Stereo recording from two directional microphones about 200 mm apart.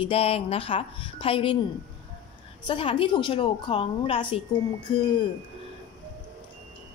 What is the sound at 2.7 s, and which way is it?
Speech, 25° left (ahead or behind).